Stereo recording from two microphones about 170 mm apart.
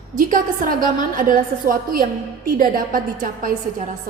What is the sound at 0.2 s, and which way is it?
A woman's voice, 55° right (ahead or behind).